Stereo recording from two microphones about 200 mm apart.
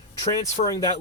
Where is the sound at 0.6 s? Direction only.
20° left (ahead or behind).